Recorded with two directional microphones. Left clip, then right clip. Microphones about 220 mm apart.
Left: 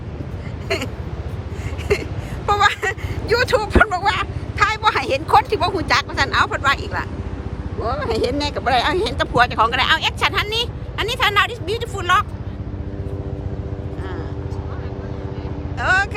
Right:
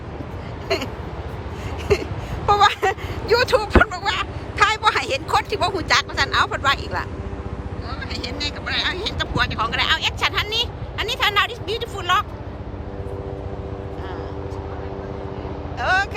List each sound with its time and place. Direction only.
0.7 s crow: 15° right (ahead or behind)
1.9 s a sound: 15° right (ahead or behind)
2.5 s vehicle: 15° right (ahead or behind)
7.8 s speech: 10° left (ahead or behind); by 12.2 s 10° right (ahead or behind)
15.8 s vehicle: 10° right (ahead or behind)